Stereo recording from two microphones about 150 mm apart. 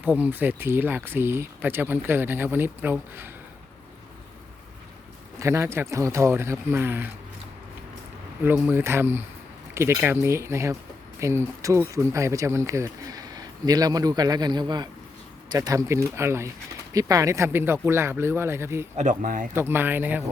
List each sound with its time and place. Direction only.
0.0 s speech: 10° right (ahead or behind)
5.4 s speech: 20° right (ahead or behind)
8.4 s speech: 15° right (ahead or behind)
18.9 s speech: 60° right (ahead or behind)
19.5 s speech: 15° right (ahead or behind)